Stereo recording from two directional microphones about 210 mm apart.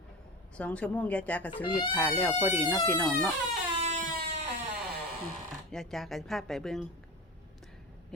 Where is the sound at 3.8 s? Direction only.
35° right (ahead or behind).